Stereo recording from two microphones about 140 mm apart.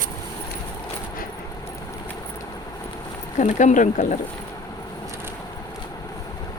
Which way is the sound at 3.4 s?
60° left (ahead or behind).